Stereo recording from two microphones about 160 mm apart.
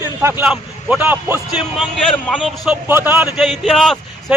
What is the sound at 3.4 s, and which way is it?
Speech, centre (ahead or behind).